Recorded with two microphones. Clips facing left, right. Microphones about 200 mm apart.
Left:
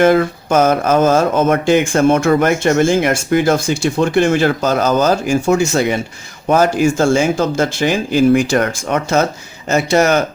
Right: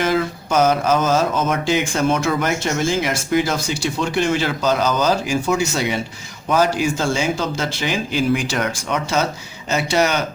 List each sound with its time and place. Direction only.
0.0 s speech: 55° left (ahead or behind)